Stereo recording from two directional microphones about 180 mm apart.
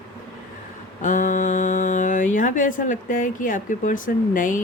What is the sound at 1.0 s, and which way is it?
Speech, 45° left (ahead or behind).